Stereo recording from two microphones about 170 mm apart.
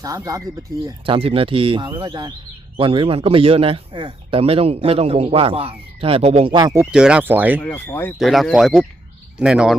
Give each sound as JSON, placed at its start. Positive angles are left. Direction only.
{"t": 0.0, "sound": "speech", "side_deg": -20}
{"t": 0.9, "sound": "speech", "side_deg": -30}
{"t": 6.9, "sound": "speech", "side_deg": -5}
{"t": 7.6, "sound": "speech", "side_deg": 10}
{"t": 8.2, "sound": "speech", "side_deg": 0}